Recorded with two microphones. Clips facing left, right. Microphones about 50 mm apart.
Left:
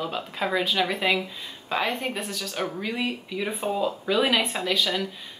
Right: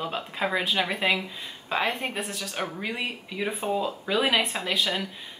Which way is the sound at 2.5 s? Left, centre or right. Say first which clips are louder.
Left 2 dB; right.